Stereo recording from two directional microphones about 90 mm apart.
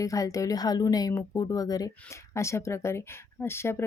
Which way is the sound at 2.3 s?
30° left (ahead or behind).